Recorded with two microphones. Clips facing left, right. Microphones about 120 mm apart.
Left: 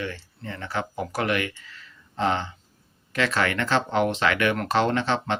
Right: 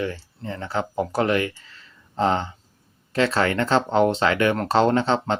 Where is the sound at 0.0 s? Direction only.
30° right (ahead or behind).